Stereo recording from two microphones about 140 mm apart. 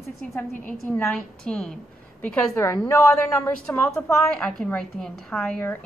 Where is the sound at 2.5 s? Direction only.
20° left (ahead or behind).